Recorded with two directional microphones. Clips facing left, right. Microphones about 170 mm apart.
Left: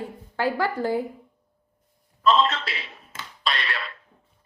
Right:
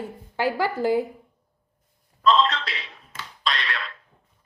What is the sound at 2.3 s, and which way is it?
Speech, 5° left (ahead or behind).